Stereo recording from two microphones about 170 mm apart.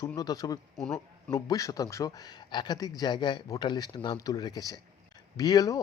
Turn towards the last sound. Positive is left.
turn(degrees=20)  # may be behind; listen again after turning